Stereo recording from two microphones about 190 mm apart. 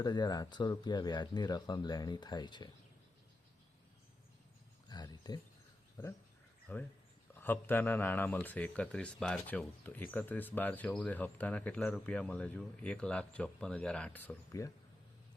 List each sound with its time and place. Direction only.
0.0 s speech: 20° left (ahead or behind)
4.9 s a sound: 20° left (ahead or behind)
6.0 s speech: 20° left (ahead or behind)